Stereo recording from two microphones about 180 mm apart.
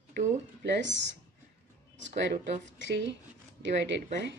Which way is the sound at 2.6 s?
80° right.